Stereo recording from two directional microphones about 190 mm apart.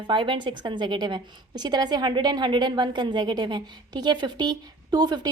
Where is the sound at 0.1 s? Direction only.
25° right (ahead or behind).